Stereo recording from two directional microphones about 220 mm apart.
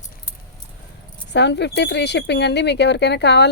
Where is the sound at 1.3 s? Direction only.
50° left (ahead or behind).